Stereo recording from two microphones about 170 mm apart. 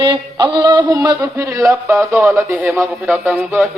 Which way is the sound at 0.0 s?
25° right (ahead or behind).